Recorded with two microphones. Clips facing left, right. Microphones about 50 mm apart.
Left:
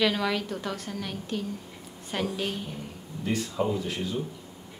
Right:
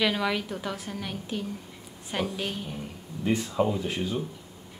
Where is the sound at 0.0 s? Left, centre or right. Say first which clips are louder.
Even; centre.